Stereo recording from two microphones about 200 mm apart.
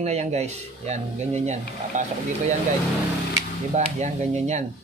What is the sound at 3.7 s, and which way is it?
Speech, 35° right (ahead or behind).